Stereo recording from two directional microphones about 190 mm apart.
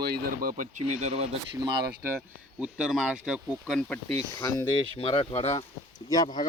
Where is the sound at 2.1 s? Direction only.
5° right (ahead or behind).